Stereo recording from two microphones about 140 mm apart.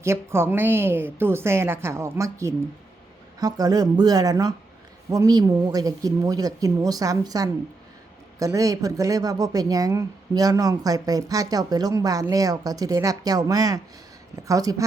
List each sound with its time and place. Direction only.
0.0 s a woman's voice: 20° right (ahead or behind)